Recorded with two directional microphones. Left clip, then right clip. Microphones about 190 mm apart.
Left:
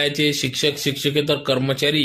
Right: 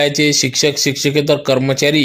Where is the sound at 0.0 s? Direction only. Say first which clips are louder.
Right 6 dB; 20° right (ahead or behind).